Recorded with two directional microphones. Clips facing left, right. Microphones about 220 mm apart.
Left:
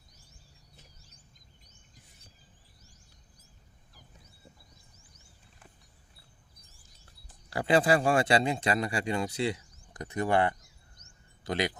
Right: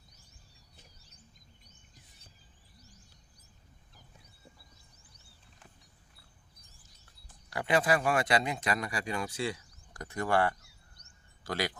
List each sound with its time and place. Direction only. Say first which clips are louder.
7.5 s speech: left 4 dB; 30° left (ahead or behind)